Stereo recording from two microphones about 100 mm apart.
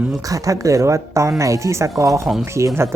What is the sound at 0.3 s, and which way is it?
Speech, 35° right (ahead or behind).